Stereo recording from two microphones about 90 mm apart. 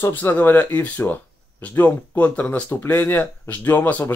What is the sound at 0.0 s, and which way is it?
Speech, 20° left (ahead or behind).